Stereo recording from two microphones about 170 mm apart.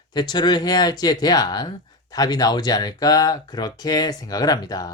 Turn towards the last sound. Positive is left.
turn(degrees=20)  # may be behind; listen again after turning